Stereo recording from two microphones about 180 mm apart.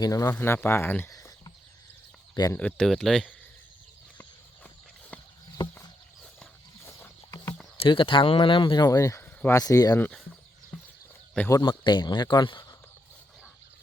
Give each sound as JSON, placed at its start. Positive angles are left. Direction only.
{"t": 0.0, "sound": "speech", "side_deg": 20}
{"t": 2.6, "sound": "speech", "side_deg": 5}
{"t": 6.4, "sound": "horse", "side_deg": 15}
{"t": 7.8, "sound": "speech", "side_deg": 30}
{"t": 11.3, "sound": "speech", "side_deg": 15}
{"t": 11.6, "sound": "speech", "side_deg": 25}